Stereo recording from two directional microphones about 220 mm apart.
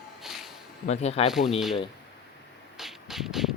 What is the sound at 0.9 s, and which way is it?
Speech, 30° left (ahead or behind).